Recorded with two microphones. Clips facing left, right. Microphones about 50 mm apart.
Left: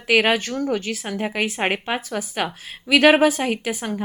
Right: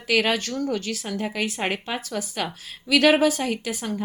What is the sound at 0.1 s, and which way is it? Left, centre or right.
A woman's voice, left.